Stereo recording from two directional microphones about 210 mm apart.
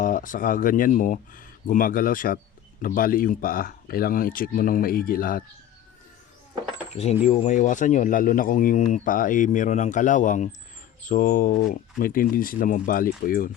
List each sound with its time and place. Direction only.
0.0 s speech: 40° left (ahead or behind)
6.9 s speech: 30° left (ahead or behind)